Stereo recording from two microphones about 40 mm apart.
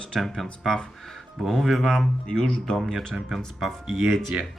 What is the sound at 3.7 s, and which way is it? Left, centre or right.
Speech, centre.